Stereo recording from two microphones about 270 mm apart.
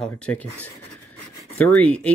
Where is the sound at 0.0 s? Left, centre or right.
Centre.